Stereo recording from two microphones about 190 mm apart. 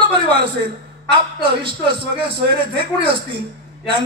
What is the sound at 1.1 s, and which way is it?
A man's voice, 25° right (ahead or behind).